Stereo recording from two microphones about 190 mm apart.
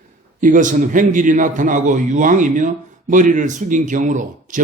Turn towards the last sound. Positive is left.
turn(degrees=-40)  # may be behind; listen again after turning